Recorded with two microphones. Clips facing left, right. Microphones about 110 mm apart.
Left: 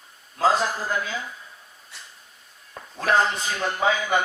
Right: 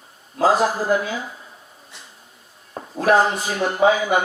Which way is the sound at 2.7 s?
35° right (ahead or behind).